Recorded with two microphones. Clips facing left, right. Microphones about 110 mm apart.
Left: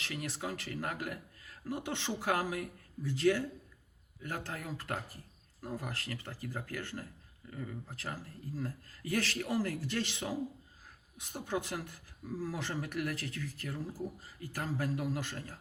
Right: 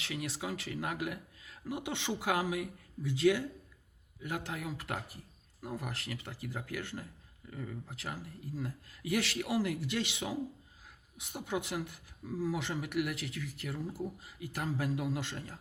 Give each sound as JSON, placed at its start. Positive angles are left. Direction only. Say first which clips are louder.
{"t": 0.1, "sound": "speech", "louder": "right 2 dB", "side_deg": -15}